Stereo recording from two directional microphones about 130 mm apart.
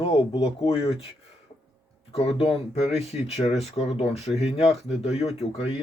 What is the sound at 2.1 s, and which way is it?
Speech, 50° left (ahead or behind).